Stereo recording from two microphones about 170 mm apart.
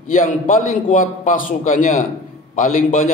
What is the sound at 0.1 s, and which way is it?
A man's voice, 50° left (ahead or behind).